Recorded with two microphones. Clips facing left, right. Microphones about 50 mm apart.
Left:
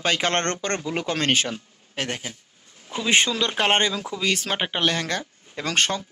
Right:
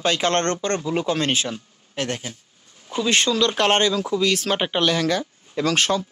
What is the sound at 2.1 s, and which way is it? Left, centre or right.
Speech, left.